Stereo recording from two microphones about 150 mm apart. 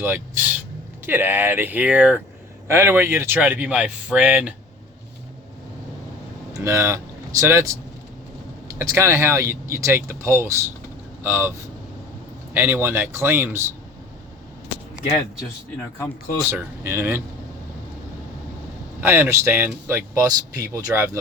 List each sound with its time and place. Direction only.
0.0 s speech: 15° right (ahead or behind)
6.7 s speech: 20° right (ahead or behind)
12.5 s speech: 15° right (ahead or behind)
16.5 s speech: 15° right (ahead or behind)
18.9 s speech: 15° right (ahead or behind)